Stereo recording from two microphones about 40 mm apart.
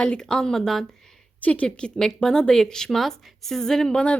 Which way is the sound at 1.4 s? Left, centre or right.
Left.